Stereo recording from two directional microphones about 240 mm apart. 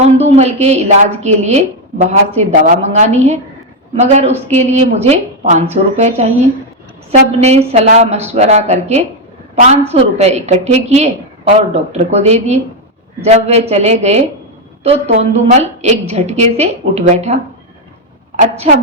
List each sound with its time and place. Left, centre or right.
0.0 s a woman's voice: right
18.3 s a woman's voice: right